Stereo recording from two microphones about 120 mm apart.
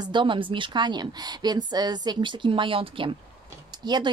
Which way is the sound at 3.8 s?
35° right (ahead or behind).